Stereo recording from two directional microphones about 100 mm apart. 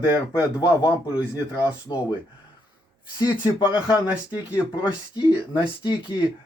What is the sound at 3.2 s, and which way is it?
Speech, 45° left (ahead or behind).